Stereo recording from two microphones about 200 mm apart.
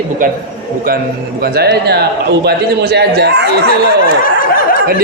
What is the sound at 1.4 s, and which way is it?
Speech, 50° right (ahead or behind).